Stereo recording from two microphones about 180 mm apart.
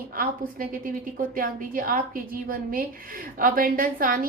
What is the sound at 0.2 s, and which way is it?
A woman's voice, 50° right (ahead or behind).